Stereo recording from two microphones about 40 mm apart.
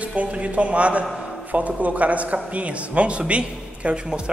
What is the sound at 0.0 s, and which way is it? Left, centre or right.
A man's voice, right.